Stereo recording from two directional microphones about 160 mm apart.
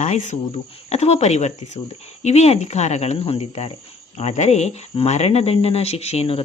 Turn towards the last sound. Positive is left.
turn(degrees=40)  # may be behind; listen again after turning